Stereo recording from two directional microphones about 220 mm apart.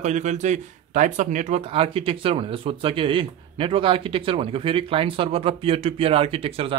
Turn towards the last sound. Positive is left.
turn(degrees=-25)  # may be behind; listen again after turning